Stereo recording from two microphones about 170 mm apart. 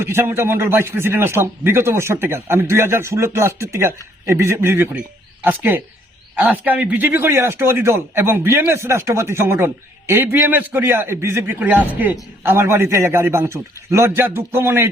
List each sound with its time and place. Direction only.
0.0 s a man's voice: 15° right (ahead or behind)